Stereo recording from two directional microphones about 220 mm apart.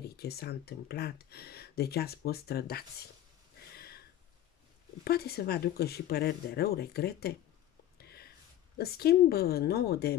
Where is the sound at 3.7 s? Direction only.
45° left (ahead or behind).